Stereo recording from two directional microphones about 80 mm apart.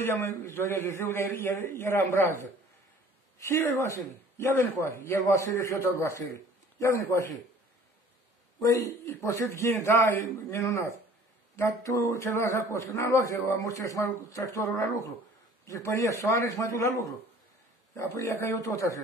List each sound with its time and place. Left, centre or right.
0.0 s speech: left
8.6 s speech: left